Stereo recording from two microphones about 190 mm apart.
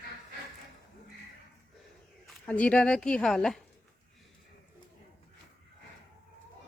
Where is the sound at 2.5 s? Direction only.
5° left (ahead or behind).